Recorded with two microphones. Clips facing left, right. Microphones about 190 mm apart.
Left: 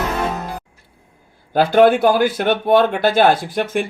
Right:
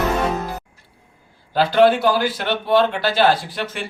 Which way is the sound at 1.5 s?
50° left (ahead or behind).